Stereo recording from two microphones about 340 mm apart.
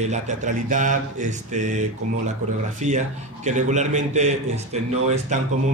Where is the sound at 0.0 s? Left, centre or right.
Right.